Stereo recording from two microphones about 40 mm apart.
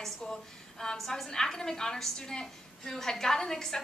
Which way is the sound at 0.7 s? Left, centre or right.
Centre.